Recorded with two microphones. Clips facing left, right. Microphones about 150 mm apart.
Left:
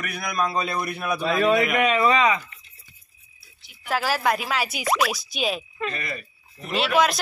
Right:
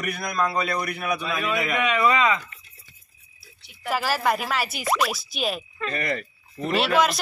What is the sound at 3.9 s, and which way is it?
Speech, centre (ahead or behind).